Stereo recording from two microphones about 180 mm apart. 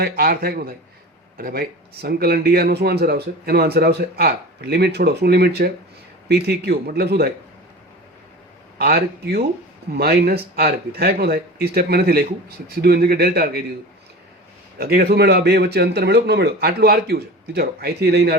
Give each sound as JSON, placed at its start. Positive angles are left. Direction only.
{"t": 0.0, "sound": "speech", "side_deg": -55}
{"t": 8.8, "sound": "speech", "side_deg": -60}
{"t": 14.8, "sound": "speech", "side_deg": -60}